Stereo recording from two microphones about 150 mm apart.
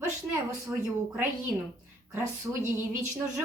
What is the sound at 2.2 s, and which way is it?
Speech, 15° right (ahead or behind).